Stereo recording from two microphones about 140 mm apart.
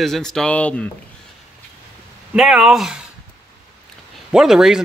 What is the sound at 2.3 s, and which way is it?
Speech, 5° right (ahead or behind).